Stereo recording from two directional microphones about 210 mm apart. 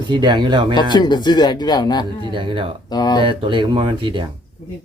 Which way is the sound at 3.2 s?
25° right (ahead or behind).